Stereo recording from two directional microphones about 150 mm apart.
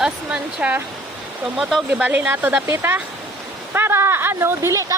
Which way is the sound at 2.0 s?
10° right (ahead or behind).